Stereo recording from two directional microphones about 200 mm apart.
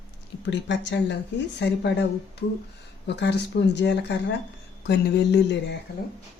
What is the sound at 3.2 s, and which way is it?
Speech, 60° left (ahead or behind).